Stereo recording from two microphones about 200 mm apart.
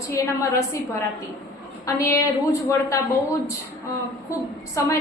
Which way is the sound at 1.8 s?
15° left (ahead or behind).